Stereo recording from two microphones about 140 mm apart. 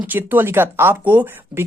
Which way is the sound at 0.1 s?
15° right (ahead or behind).